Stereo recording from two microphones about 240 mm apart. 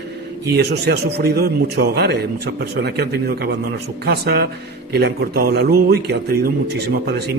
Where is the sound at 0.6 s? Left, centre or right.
Right.